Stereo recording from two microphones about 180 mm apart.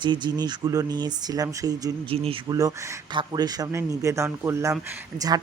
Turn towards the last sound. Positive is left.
turn(degrees=-20)  # may be behind; listen again after turning